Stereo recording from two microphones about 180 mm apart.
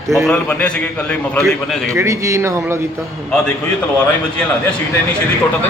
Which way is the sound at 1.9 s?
15° right (ahead or behind).